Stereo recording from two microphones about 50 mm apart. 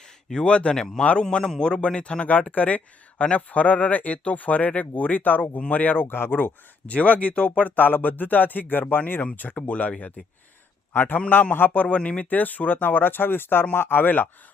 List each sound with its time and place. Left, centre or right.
0.4 s a man's voice: left
2.2 s speech: left
6.8 s speech: left